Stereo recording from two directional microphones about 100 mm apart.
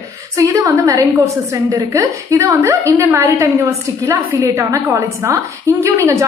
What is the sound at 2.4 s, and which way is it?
Speech, 20° right (ahead or behind).